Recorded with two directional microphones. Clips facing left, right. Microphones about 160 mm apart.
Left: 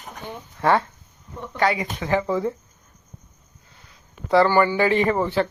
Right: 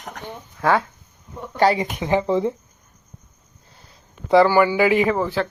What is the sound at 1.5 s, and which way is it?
Speech, 30° right (ahead or behind).